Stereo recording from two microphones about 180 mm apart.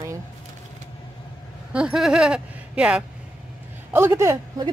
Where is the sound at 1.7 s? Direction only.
5° right (ahead or behind).